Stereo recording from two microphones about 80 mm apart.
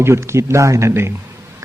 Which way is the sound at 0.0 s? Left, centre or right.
Right.